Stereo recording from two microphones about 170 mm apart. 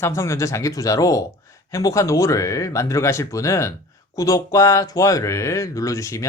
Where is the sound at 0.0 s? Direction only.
15° left (ahead or behind).